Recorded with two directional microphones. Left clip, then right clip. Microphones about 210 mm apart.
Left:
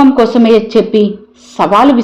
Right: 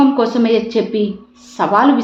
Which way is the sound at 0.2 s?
30° left (ahead or behind).